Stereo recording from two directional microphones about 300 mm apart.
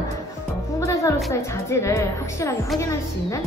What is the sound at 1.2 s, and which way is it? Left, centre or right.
A woman's voice, centre.